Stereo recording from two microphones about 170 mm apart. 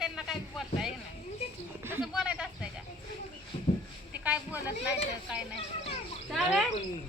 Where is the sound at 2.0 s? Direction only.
5° right (ahead or behind).